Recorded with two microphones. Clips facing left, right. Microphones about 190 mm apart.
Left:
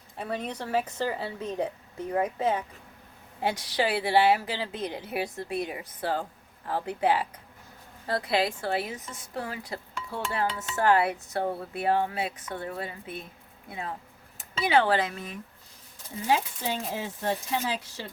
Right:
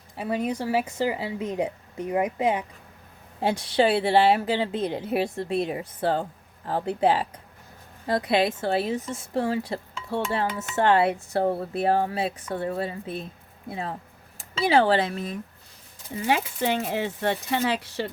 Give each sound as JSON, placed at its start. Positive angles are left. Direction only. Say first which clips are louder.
{"t": 0.2, "sound": "speech", "louder": "right 6 dB", "side_deg": -10}
{"t": 3.4, "sound": "a woman's voice", "louder": "right 6 dB", "side_deg": -30}
{"t": 8.0, "sound": "a woman's voice", "louder": "right 4 dB", "side_deg": -20}
{"t": 16.2, "sound": "speech", "louder": "right 3 dB", "side_deg": -70}